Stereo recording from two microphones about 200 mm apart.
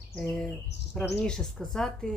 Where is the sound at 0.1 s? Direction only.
5° left (ahead or behind).